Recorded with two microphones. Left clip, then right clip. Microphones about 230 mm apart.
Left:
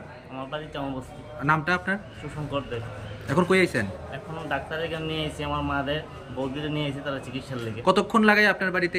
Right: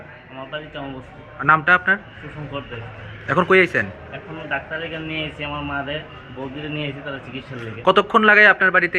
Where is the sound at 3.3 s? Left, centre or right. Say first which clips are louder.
Right 7 dB; centre.